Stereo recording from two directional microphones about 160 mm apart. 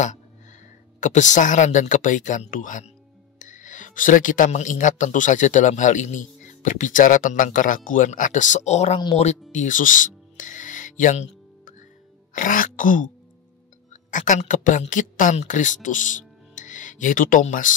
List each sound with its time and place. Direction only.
1.0 s speech: 50° left (ahead or behind)
9.5 s music: 50° left (ahead or behind)
12.4 s speech: 55° left (ahead or behind)
14.1 s speech: 50° left (ahead or behind)